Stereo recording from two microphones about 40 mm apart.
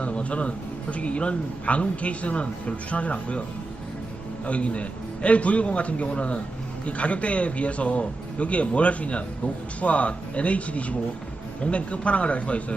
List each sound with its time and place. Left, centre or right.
0.0 s speech: left
4.4 s speech: left